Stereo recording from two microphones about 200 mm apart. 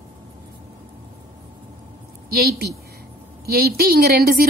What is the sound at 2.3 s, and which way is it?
A woman's voice, 50° right (ahead or behind).